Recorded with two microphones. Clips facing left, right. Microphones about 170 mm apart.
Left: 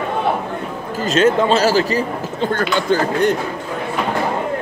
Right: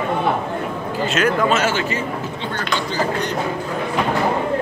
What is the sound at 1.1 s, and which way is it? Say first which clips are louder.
Speech: left 5 dB; 30° left (ahead or behind).